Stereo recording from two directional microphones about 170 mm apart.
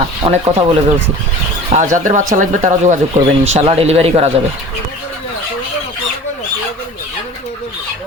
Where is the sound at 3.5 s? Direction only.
35° right (ahead or behind).